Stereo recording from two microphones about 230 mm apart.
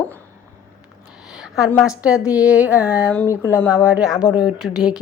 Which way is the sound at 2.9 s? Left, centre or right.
Centre.